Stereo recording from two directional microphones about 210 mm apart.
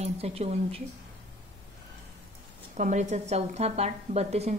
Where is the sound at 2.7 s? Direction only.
35° right (ahead or behind).